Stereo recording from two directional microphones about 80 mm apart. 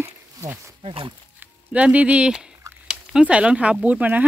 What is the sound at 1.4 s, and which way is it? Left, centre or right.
Speech, centre.